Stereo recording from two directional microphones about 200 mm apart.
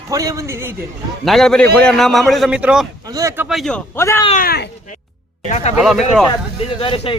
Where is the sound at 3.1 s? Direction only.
15° right (ahead or behind).